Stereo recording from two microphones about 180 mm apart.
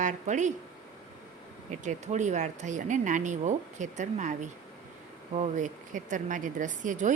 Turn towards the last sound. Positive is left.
turn(degrees=-45)  # may be behind; listen again after turning